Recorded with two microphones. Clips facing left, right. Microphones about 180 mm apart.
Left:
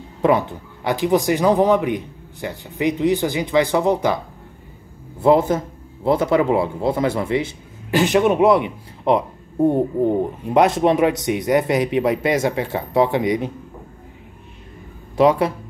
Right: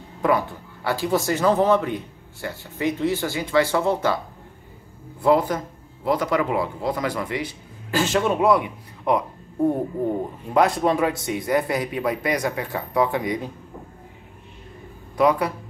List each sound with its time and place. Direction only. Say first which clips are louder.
0.2 s speech: left 4 dB; 20° left (ahead or behind)
5.2 s a man's voice: left 4 dB; 25° left (ahead or behind)
15.1 s a man's voice: left 4 dB; 25° left (ahead or behind)